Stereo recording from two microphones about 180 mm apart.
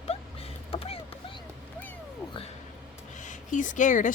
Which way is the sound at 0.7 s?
30° left (ahead or behind).